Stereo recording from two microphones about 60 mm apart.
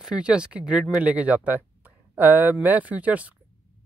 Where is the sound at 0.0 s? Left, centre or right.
Centre.